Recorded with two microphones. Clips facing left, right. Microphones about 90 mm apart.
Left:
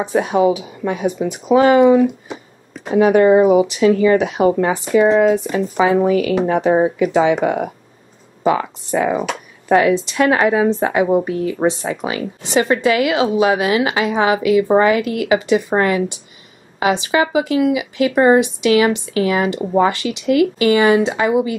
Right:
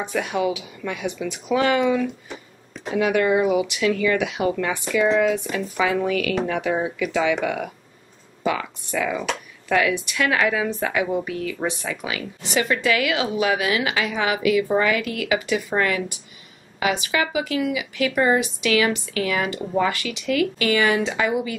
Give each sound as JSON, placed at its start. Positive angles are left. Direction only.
{"t": 0.0, "sound": "a woman's voice", "side_deg": 25}